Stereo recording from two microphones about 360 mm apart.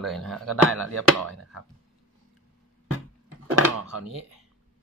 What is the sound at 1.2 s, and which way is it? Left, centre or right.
Speech, right.